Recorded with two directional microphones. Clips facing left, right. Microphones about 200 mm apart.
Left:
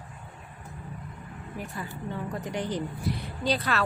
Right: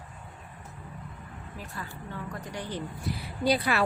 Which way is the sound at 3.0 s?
5° right (ahead or behind).